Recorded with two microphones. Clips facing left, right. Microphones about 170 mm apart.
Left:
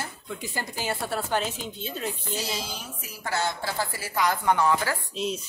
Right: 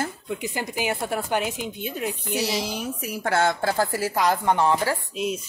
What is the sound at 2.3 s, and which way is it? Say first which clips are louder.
A woman's voice: right 6 dB; 70° right (ahead or behind).